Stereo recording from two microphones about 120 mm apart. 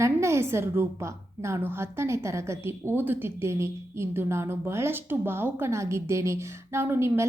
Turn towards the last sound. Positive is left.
turn(degrees=-20)  # may be behind; listen again after turning